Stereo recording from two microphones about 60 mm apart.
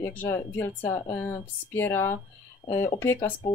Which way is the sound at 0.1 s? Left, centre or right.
Left.